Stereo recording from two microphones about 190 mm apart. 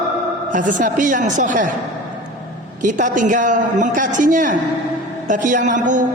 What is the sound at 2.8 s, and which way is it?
A woman's voice, 45° right (ahead or behind).